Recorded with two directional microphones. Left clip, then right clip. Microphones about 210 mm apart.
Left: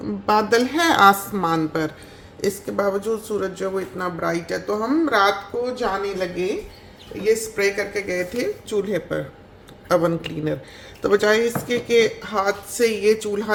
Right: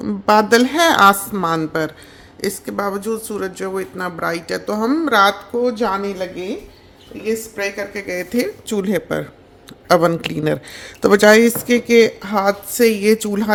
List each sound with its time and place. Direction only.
0.0 s speech: 35° right (ahead or behind)
7.3 s a woman's voice: 35° right (ahead or behind); by 13.5 s 50° right (ahead or behind)